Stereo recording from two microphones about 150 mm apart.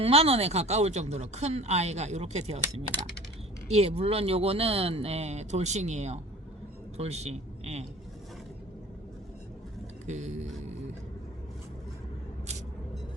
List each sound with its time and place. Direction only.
0.0 s a man's voice: 40° right (ahead or behind)
10.1 s speech: 50° right (ahead or behind)